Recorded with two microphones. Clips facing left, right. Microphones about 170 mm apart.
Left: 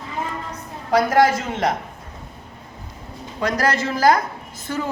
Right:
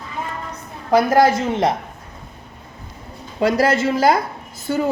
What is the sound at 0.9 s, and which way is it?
Speech, 25° right (ahead or behind).